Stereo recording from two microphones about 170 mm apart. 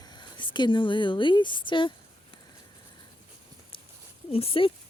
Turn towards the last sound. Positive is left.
turn(degrees=30)  # may be behind; listen again after turning